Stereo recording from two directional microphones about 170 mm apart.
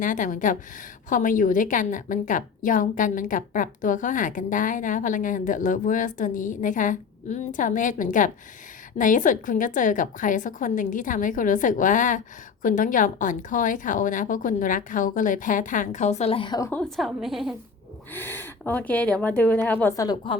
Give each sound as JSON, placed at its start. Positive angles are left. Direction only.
{"t": 0.0, "sound": "a woman's voice", "side_deg": 50}
{"t": 17.0, "sound": "a woman's voice", "side_deg": 0}
{"t": 18.1, "sound": "a woman's voice", "side_deg": 10}
{"t": 20.1, "sound": "a woman's voice", "side_deg": 30}